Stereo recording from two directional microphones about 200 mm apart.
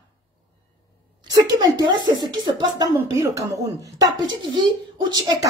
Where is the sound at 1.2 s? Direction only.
20° right (ahead or behind).